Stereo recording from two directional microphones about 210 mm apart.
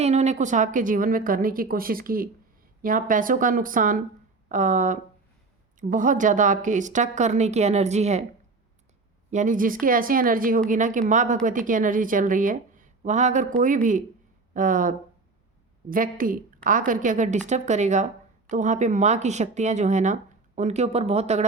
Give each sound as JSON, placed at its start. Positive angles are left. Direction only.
{"t": 0.0, "sound": "speech", "side_deg": -30}
{"t": 9.3, "sound": "speech", "side_deg": -35}
{"t": 14.5, "sound": "speech", "side_deg": -40}